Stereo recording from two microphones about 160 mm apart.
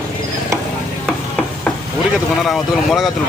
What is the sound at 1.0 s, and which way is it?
Stir, 5° left (ahead or behind).